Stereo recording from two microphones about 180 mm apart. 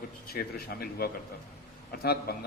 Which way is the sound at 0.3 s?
60° left (ahead or behind).